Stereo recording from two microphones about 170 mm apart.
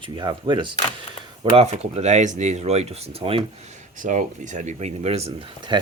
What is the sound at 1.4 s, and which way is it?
Speech, 40° right (ahead or behind).